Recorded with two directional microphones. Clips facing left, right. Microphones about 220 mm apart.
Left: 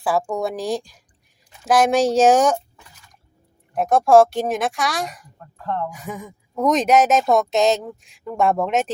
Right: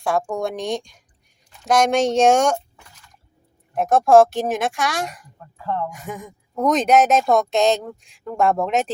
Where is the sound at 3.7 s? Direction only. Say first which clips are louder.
Even; centre (ahead or behind).